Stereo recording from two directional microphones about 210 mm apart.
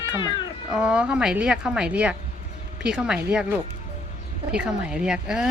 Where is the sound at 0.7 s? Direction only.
5° right (ahead or behind).